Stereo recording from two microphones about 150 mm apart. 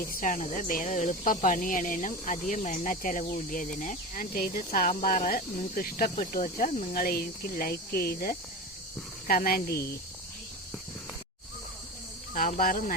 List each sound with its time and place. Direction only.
0.0 s speech: 65° left (ahead or behind); by 9.9 s 90° left
12.3 s speech: 65° left (ahead or behind)